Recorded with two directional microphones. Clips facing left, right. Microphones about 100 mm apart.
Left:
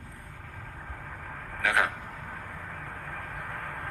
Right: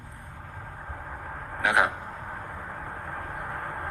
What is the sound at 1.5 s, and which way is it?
Vehicle, 20° right (ahead or behind).